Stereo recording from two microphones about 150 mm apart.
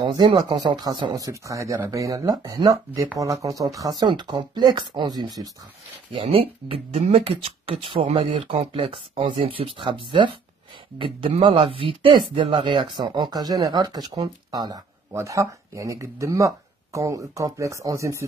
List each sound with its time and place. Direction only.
0.0 s speech: 30° right (ahead or behind)
6.1 s speech: 40° right (ahead or behind); by 18.2 s 20° right (ahead or behind)